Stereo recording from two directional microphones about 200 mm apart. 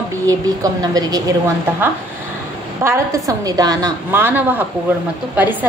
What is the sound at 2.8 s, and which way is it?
A woman's voice, 15° right (ahead or behind).